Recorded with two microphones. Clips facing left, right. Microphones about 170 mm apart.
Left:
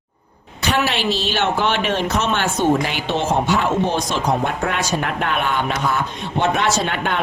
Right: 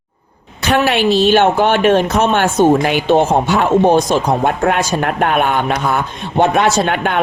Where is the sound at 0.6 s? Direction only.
55° right (ahead or behind).